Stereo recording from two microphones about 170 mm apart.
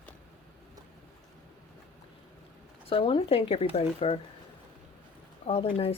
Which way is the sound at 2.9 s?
30° left (ahead or behind).